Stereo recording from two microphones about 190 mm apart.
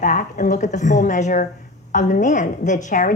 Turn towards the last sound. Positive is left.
turn(degrees=40)  # may be behind; listen again after turning